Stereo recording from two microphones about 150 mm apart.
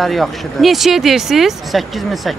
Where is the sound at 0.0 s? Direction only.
Centre (ahead or behind).